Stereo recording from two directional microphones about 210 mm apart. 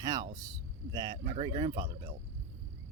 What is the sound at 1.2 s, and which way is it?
Speech, 30° right (ahead or behind).